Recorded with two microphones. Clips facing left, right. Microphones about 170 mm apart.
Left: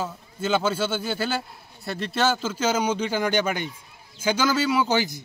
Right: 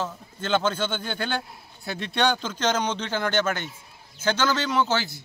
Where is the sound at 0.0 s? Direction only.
10° left (ahead or behind).